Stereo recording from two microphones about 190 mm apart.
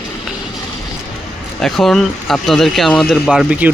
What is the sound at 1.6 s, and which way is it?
Speech, centre (ahead or behind).